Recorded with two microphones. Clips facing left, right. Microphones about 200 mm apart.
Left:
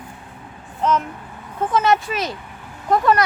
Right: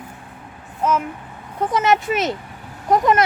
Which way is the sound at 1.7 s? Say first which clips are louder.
Even; 20° right (ahead or behind).